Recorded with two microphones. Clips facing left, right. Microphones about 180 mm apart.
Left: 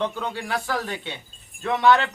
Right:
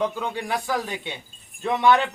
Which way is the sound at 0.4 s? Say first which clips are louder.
Right 1 dB; 15° right (ahead or behind).